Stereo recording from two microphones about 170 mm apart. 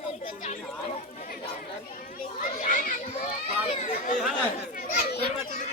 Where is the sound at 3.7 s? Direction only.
40° left (ahead or behind).